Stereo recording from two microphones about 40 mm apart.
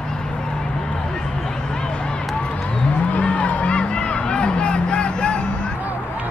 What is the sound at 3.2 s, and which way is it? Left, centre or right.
Music, left.